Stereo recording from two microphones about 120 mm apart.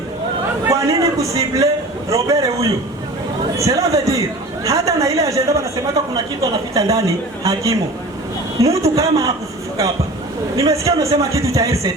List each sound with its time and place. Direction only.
0.7 s a sound: 25° right (ahead or behind)
3.6 s a woman's voice: 25° right (ahead or behind)
10.6 s speech: 30° right (ahead or behind)